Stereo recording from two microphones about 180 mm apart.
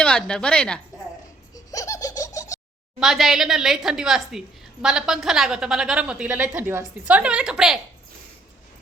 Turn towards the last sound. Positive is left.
turn(degrees=-5)  # may be behind; listen again after turning